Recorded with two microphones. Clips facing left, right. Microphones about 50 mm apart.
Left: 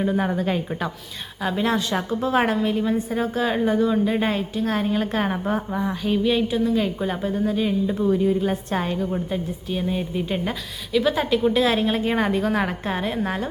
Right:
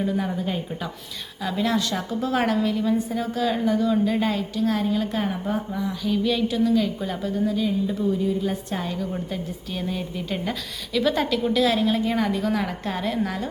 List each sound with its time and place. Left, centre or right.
0.0 s a woman's voice: left
1.4 s a woman's voice: left
6.2 s a woman's voice: left
9.1 s a woman's voice: centre
10.5 s a woman's voice: centre; by 12.7 s left
12.8 s a woman's voice: left